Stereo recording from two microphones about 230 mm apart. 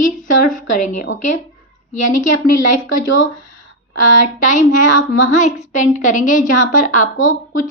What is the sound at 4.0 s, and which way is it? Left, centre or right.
Speech, left.